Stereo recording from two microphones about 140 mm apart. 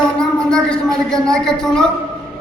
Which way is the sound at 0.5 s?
5° left (ahead or behind).